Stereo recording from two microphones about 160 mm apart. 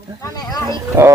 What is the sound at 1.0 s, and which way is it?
Speech, 15° right (ahead or behind).